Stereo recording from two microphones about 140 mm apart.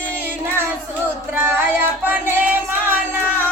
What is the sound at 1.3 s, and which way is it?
Music, 15° right (ahead or behind).